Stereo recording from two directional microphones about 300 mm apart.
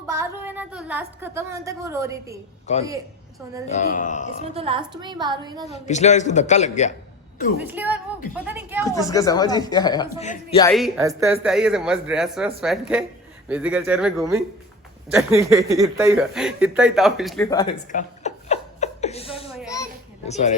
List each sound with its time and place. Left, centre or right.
0.1 s a woman's voice: centre
2.7 s a man's voice: left
4.5 s a woman's voice: centre
5.7 s a man's voice: left
7.6 s speech: centre
9.0 s speech: centre
10.7 s speech: centre; by 20.5 s left